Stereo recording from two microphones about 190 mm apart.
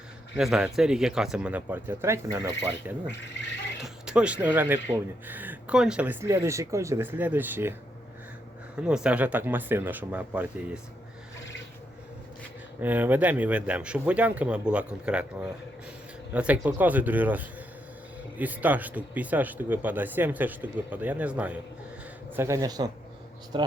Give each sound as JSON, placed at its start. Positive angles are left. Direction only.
{"t": 0.3, "sound": "speech", "side_deg": -5}
{"t": 12.8, "sound": "speech", "side_deg": -10}